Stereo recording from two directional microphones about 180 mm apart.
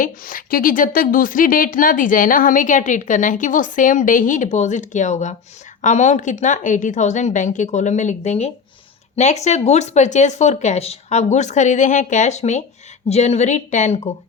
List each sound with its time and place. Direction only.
0.0 s speech: 50° left (ahead or behind)